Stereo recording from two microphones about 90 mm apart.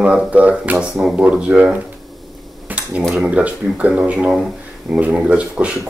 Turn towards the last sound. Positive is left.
turn(degrees=-15)  # may be behind; listen again after turning